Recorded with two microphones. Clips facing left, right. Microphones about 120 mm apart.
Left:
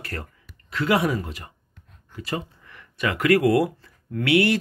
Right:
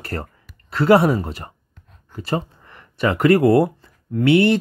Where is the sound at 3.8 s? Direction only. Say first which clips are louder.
Right 8 dB; 25° right (ahead or behind).